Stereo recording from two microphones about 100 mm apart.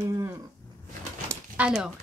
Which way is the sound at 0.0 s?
25° right (ahead or behind).